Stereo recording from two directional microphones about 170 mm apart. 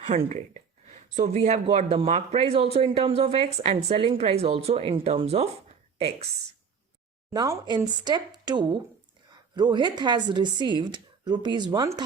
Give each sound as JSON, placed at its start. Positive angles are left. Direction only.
{"t": 0.0, "sound": "speech", "side_deg": -45}
{"t": 7.3, "sound": "speech", "side_deg": -20}